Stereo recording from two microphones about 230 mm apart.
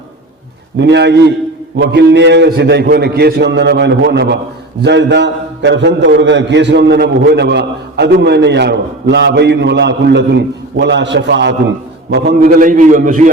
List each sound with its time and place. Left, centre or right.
0.8 s a man's voice: right